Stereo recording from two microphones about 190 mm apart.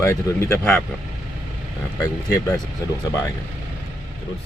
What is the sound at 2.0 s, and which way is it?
Speech, 15° left (ahead or behind).